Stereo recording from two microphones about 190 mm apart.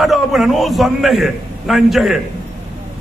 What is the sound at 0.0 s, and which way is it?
A man's voice, centre (ahead or behind).